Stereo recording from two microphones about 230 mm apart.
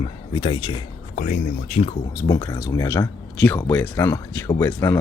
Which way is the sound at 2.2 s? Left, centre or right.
Centre.